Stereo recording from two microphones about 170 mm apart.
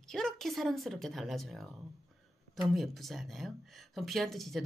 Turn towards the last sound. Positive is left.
turn(degrees=0)  # may be behind; listen again after turning